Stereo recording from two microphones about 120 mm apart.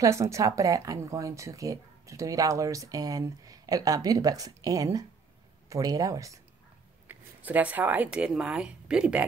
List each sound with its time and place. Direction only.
0.0 s speech: 25° right (ahead or behind)
7.1 s speech: 15° right (ahead or behind)